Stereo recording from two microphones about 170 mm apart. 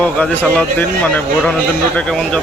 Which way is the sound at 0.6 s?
5° left (ahead or behind).